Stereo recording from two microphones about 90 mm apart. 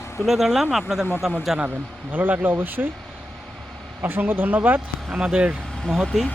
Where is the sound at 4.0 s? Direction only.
25° right (ahead or behind).